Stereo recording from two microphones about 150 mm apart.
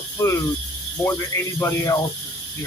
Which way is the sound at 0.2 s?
20° left (ahead or behind).